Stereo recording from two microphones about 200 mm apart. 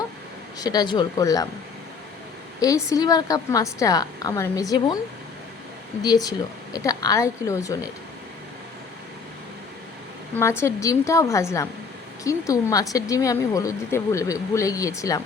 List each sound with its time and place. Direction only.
0.6 s speech: 20° left (ahead or behind)
2.6 s speech: 15° left (ahead or behind)
6.0 s speech: 20° left (ahead or behind)
10.6 s speech: 15° left (ahead or behind)